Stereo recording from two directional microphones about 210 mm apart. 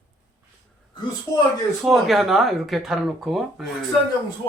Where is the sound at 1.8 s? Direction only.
Centre (ahead or behind).